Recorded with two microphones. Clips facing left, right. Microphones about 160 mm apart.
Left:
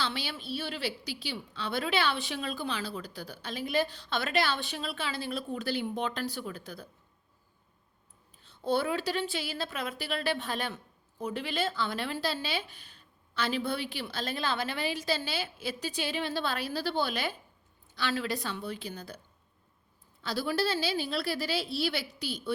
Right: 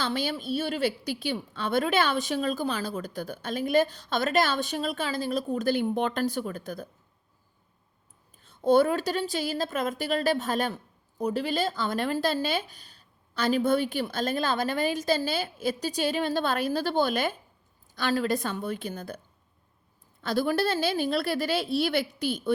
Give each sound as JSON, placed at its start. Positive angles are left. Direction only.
{"t": 0.0, "sound": "a woman's voice", "side_deg": -45}
{"t": 8.4, "sound": "a woman's voice", "side_deg": -45}
{"t": 20.2, "sound": "a woman's voice", "side_deg": -50}